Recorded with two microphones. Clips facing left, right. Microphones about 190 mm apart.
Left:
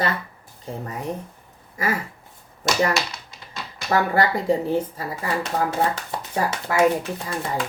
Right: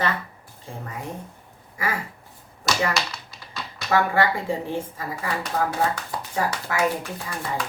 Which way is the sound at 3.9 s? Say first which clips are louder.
Left 1 dB; 40° left (ahead or behind).